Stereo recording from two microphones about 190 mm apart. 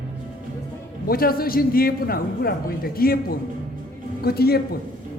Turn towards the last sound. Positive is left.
turn(degrees=55)  # may be behind; listen again after turning